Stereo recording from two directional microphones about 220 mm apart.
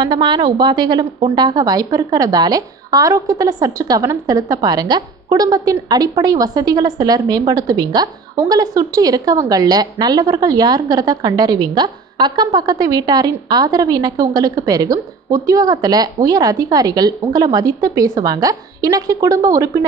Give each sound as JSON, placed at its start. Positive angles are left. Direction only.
{"t": 0.0, "sound": "a woman's voice", "side_deg": -20}